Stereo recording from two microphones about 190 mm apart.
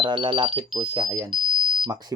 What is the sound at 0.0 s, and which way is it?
Speech, 25° right (ahead or behind).